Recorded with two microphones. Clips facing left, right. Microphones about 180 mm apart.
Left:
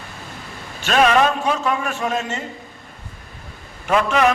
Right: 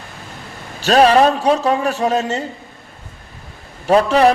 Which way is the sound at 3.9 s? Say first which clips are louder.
Right 5 dB; 35° right (ahead or behind).